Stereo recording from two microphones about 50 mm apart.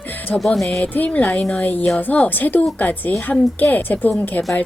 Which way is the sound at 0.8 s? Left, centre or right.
Left.